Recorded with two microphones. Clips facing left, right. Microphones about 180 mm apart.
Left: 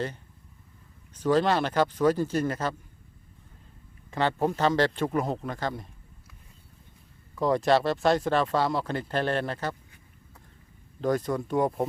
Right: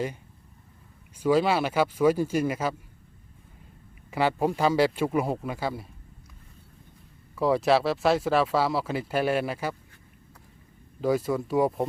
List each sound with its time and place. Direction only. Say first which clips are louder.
1.1 s speech: right 1 dB; 10° right (ahead or behind)
4.1 s speech: right 1 dB; 10° right (ahead or behind)
7.3 s speech: right 1 dB; 5° right (ahead or behind)
11.0 s speech: right 1 dB; 5° right (ahead or behind)